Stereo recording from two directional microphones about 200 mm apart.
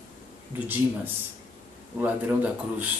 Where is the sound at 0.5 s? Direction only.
10° right (ahead or behind).